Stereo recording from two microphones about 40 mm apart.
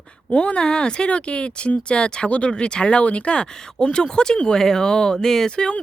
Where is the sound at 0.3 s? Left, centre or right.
Left.